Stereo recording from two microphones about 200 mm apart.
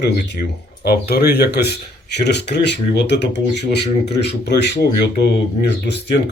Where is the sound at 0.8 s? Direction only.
50° left (ahead or behind).